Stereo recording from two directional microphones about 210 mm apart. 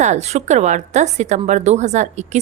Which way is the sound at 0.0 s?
35° right (ahead or behind).